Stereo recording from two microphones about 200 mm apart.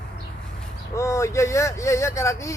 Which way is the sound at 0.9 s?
15° left (ahead or behind).